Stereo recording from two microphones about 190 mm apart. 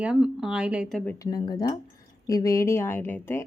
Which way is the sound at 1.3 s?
20° left (ahead or behind).